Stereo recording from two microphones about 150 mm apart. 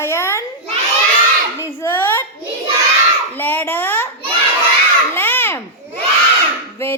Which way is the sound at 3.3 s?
10° left (ahead or behind).